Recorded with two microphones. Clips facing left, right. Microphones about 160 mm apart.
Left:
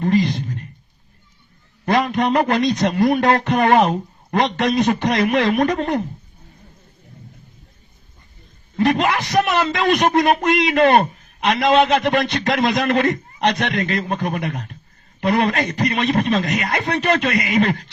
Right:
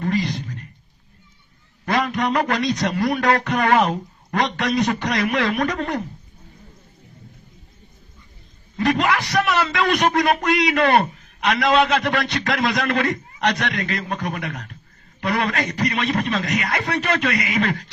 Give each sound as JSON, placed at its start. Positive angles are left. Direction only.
{"t": 0.0, "sound": "a sound", "side_deg": 25}
{"t": 1.8, "sound": "a sound", "side_deg": 25}
{"t": 2.5, "sound": "a man's voice", "side_deg": 20}
{"t": 9.0, "sound": "a man's voice", "side_deg": 20}
{"t": 13.7, "sound": "a man's voice", "side_deg": 40}
{"t": 14.1, "sound": "a man's voice", "side_deg": 25}